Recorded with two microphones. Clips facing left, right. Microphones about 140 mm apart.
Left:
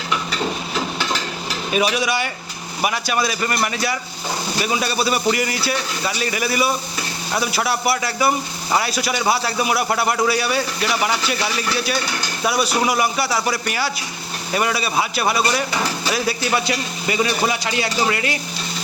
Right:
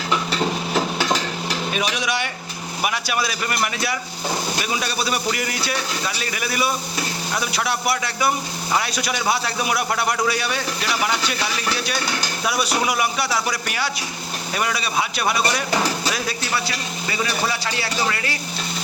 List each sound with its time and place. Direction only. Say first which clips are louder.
1.7 s speech: left 7 dB; 5° left (ahead or behind)
12.5 s speech: left 3 dB; centre (ahead or behind)
16.6 s speech: left 5 dB; 20° left (ahead or behind)